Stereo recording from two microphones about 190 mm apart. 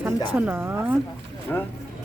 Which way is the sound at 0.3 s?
10° right (ahead or behind).